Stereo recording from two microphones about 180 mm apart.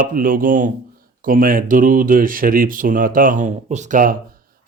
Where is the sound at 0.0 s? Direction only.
50° right (ahead or behind).